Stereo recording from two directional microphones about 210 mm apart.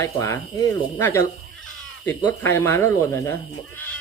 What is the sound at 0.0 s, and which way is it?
Speech, 15° left (ahead or behind).